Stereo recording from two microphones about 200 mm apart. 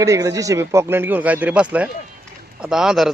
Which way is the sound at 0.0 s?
15° right (ahead or behind).